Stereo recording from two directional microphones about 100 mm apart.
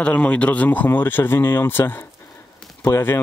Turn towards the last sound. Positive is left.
turn(degrees=25)  # may be behind; listen again after turning